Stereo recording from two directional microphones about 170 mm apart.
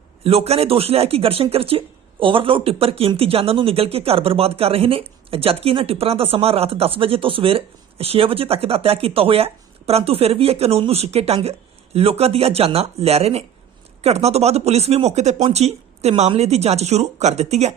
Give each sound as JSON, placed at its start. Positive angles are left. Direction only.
{"t": 0.3, "sound": "speech", "side_deg": -35}